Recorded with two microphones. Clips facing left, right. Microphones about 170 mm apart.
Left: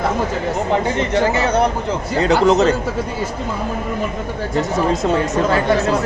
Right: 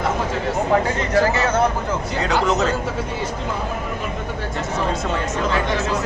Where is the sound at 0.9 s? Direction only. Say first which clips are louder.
Left 2 dB; 20° left (ahead or behind).